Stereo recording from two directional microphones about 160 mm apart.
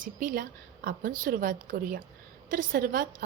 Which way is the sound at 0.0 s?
60° right (ahead or behind).